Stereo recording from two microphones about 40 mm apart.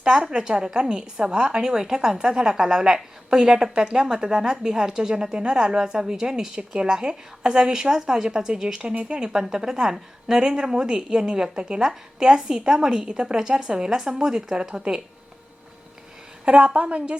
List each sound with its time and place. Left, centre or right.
0.0 s a woman's voice: right
16.5 s a woman's voice: right